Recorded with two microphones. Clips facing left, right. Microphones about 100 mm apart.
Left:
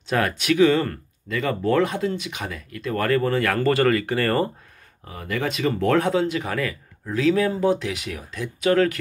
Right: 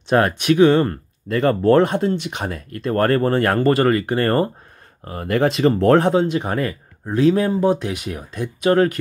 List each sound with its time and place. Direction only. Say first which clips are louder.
0.1 s speech: right 6 dB; 30° right (ahead or behind)
1.6 s speech: right 5 dB; 50° right (ahead or behind)
2.0 s speech: right 5 dB; 35° right (ahead or behind)
3.6 s speech: right 3 dB; 25° right (ahead or behind)
5.0 s speech: right 8 dB; 50° right (ahead or behind)
5.6 s speech: right 5 dB; 35° right (ahead or behind)